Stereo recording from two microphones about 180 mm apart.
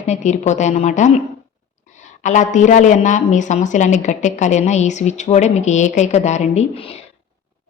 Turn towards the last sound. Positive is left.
turn(degrees=35)  # may be behind; listen again after turning